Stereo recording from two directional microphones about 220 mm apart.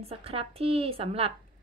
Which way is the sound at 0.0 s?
25° right (ahead or behind).